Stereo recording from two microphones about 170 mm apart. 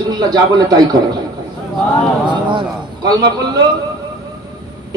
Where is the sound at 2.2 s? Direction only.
25° right (ahead or behind).